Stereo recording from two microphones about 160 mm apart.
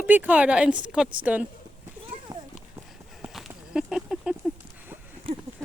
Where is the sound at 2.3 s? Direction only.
20° right (ahead or behind).